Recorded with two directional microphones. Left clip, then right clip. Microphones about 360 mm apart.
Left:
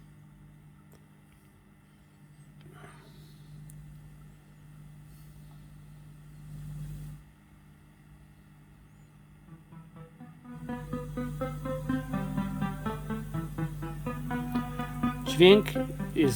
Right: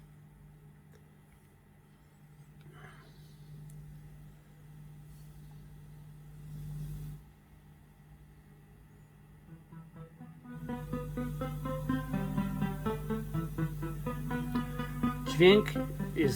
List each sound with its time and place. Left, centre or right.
10.5 s music: centre
15.2 s music: left
15.8 s music: centre